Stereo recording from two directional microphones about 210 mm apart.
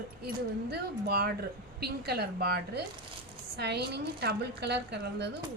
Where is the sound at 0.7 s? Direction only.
50° right (ahead or behind).